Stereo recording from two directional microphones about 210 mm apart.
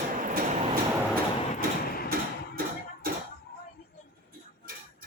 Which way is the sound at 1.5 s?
45° left (ahead or behind).